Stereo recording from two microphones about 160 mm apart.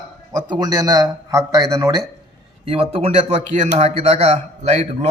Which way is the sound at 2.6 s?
35° right (ahead or behind).